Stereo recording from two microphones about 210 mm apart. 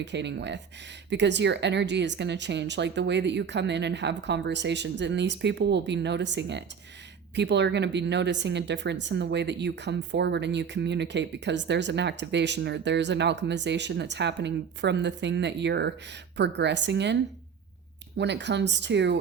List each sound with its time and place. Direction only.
0.0 s speech: 55° right (ahead or behind)
18.2 s speech: 55° right (ahead or behind)